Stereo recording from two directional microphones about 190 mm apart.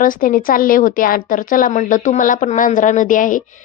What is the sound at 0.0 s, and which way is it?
A woman's voice, 45° left (ahead or behind).